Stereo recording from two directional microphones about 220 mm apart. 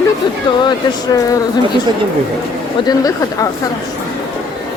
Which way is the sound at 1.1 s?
15° left (ahead or behind).